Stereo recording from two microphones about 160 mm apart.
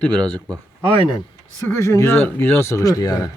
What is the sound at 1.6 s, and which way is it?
Speech, 15° left (ahead or behind).